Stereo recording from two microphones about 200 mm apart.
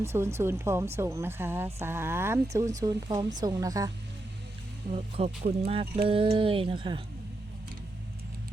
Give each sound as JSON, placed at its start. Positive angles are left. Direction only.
{"t": 0.0, "sound": "speech", "side_deg": -15}
{"t": 4.9, "sound": "speech", "side_deg": -30}